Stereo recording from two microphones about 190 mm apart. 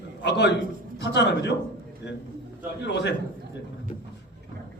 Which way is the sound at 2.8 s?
65° left (ahead or behind).